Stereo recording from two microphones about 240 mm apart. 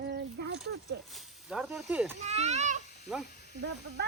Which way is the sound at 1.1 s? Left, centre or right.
Centre.